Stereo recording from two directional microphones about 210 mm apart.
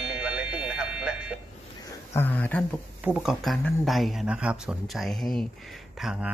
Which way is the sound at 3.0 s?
5° right (ahead or behind).